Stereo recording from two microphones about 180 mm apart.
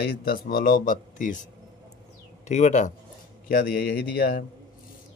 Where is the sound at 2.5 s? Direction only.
40° left (ahead or behind).